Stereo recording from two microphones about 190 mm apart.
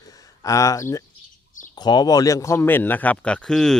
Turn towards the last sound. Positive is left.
turn(degrees=5)  # may be behind; listen again after turning